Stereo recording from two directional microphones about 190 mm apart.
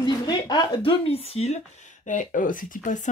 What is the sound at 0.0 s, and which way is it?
Speech, 20° left (ahead or behind).